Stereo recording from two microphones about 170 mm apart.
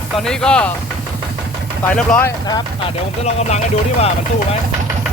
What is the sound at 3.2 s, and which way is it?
Speech, 40° left (ahead or behind).